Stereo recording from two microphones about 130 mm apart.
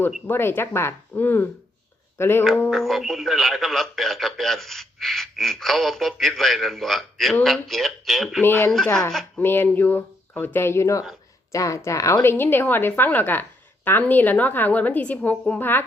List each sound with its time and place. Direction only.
0.3 s a woman's voice: 15° left (ahead or behind)
2.6 s speech: centre (ahead or behind)
8.4 s a woman's voice: 15° left (ahead or behind)
8.7 s speech: 5° left (ahead or behind)
9.4 s a woman's voice: 15° left (ahead or behind)